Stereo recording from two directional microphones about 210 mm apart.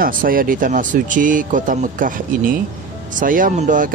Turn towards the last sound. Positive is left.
turn(degrees=-40)  # may be behind; listen again after turning